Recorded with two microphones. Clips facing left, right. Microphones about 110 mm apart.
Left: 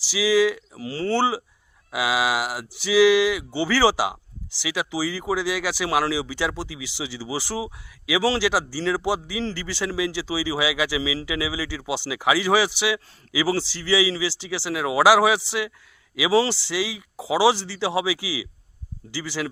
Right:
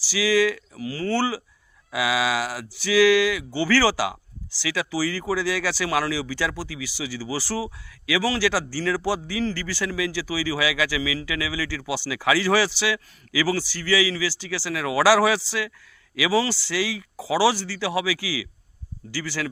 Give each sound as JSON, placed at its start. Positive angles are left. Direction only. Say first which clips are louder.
{"t": 0.0, "sound": "speech", "louder": "left 1 dB", "side_deg": 20}